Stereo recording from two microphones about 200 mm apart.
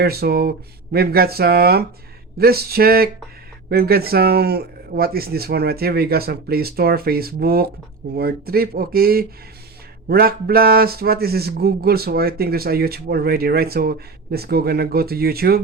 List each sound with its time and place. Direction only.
0.0 s speech: 50° right (ahead or behind)